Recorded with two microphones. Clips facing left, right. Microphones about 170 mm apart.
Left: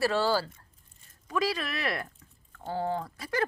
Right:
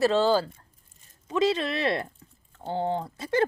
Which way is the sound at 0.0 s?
20° right (ahead or behind).